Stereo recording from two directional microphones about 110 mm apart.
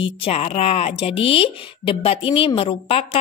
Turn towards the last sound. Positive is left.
turn(degrees=60)  # may be behind; listen again after turning